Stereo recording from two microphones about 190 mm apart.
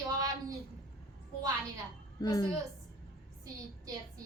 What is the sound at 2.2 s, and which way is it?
Speech, 20° left (ahead or behind).